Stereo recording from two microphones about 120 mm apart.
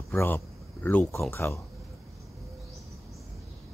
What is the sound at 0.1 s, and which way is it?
Speech, 20° left (ahead or behind).